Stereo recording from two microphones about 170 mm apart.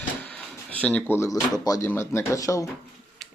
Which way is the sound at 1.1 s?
15° left (ahead or behind).